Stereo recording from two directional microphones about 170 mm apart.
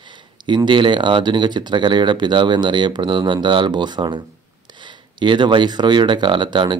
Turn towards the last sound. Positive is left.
turn(degrees=-25)  # may be behind; listen again after turning